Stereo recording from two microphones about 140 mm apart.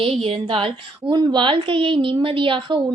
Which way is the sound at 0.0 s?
45° right (ahead or behind).